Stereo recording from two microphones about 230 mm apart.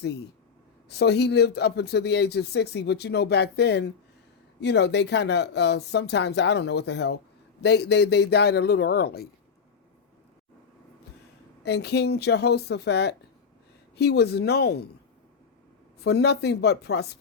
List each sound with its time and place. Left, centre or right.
0.9 s speech: left
11.6 s speech: left
16.0 s speech: left